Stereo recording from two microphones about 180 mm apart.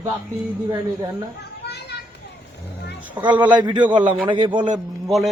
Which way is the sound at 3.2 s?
15° right (ahead or behind).